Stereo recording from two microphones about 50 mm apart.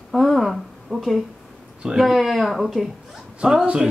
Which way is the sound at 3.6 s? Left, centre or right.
Right.